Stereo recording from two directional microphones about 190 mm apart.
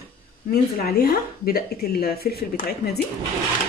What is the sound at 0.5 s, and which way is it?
Speech, 50° left (ahead or behind).